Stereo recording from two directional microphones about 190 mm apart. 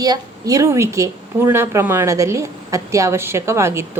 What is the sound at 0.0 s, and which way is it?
Speech, 20° right (ahead or behind).